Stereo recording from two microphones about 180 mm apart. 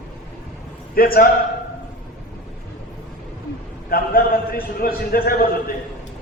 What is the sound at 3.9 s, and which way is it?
A man's voice, 55° left (ahead or behind).